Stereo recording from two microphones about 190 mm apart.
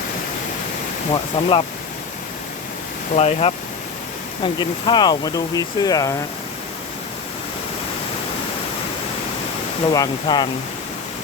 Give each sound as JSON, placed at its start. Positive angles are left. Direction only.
{"t": 1.1, "sound": "speech", "side_deg": 25}
{"t": 3.2, "sound": "speech", "side_deg": 35}
{"t": 9.9, "sound": "speech", "side_deg": 20}